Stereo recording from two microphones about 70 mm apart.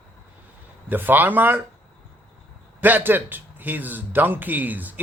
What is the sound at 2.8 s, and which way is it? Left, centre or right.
A man's voice, right.